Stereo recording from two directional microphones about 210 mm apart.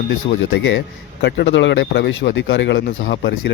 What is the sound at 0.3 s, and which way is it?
Speech, 65° left (ahead or behind).